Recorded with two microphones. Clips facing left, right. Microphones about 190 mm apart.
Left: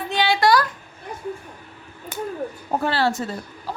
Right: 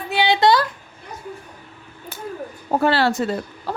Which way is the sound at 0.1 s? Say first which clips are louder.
Right 2 dB; 15° right (ahead or behind).